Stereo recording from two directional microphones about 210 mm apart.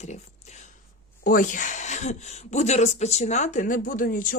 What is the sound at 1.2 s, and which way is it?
A woman's voice, 40° left (ahead or behind).